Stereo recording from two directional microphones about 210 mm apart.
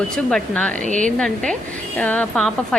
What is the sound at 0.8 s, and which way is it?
Speech, 35° right (ahead or behind).